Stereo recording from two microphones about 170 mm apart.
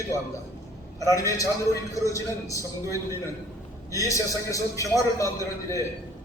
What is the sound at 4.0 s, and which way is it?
A man's voice, 20° left (ahead or behind).